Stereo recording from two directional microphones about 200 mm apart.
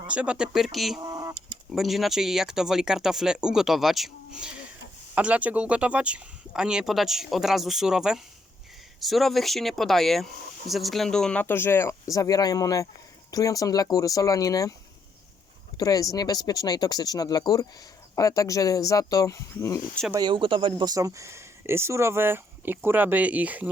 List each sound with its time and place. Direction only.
0.1 s speech: 5° right (ahead or behind)
1.0 s chicken: 20° right (ahead or behind)
1.7 s speech: centre (ahead or behind); by 14.8 s 15° left (ahead or behind)
15.8 s speech: 15° left (ahead or behind)
20.1 s speech: 20° right (ahead or behind)